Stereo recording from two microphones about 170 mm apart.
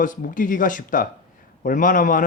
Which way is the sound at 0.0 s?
50° left (ahead or behind).